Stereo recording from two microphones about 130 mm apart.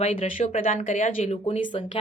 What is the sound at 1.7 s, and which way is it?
Speech, 40° left (ahead or behind).